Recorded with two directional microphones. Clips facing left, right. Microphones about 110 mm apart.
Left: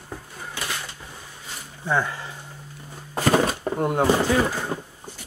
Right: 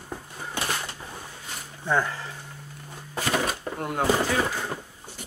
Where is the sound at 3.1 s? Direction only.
40° left (ahead or behind); by 4.1 s 25° left (ahead or behind).